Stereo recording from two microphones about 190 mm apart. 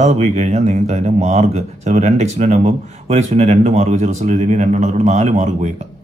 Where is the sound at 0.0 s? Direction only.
35° right (ahead or behind).